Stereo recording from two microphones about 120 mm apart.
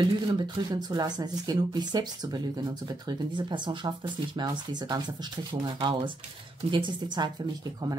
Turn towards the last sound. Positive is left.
turn(degrees=-35)  # may be behind; listen again after turning